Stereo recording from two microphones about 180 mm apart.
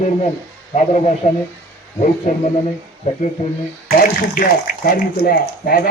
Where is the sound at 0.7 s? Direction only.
40° left (ahead or behind).